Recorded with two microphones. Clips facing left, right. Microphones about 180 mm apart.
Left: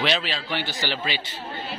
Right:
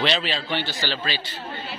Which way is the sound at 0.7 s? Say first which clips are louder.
Even; 15° left (ahead or behind).